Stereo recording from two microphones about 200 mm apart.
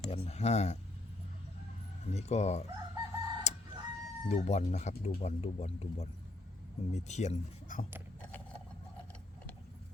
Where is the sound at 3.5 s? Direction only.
35° left (ahead or behind).